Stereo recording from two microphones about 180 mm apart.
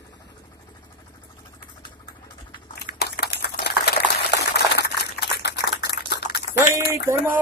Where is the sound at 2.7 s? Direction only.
60° left (ahead or behind).